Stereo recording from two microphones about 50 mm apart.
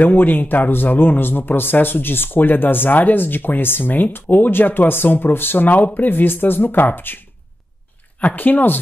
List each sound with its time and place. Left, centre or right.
0.0 s speech: left
8.2 s speech: left